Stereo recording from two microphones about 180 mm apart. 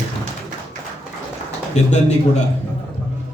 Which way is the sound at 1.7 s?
40° left (ahead or behind).